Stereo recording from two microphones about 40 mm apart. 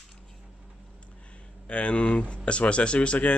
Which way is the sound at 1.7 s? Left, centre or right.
Left.